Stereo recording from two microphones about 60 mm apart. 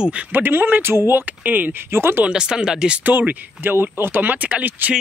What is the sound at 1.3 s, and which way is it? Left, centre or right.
Speech, right.